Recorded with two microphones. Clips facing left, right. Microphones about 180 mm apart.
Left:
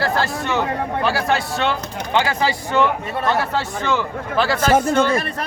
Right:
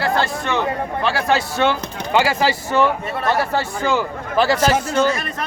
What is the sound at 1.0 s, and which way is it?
Speech, centre (ahead or behind).